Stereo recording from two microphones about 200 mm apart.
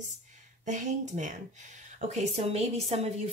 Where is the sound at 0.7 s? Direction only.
40° right (ahead or behind).